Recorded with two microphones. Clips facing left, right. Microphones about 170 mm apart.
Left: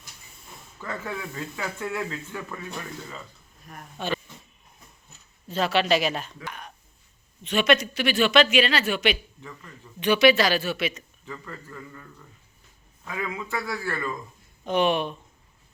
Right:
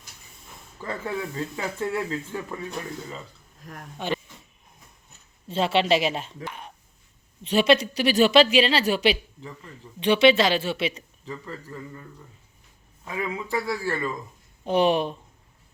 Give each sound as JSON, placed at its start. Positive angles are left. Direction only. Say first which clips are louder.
{"t": 0.8, "sound": "speech", "louder": "right 3 dB", "side_deg": -30}
{"t": 3.9, "sound": "speech", "louder": "right 1 dB", "side_deg": -15}
{"t": 5.5, "sound": "speech", "louder": "right 1 dB", "side_deg": -25}
{"t": 13.1, "sound": "speech", "louder": "right 2 dB", "side_deg": -25}